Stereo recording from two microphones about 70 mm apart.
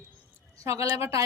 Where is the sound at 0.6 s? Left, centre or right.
Right.